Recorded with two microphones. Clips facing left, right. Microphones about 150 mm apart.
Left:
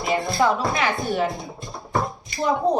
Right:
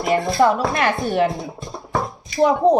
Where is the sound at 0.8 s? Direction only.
60° right (ahead or behind).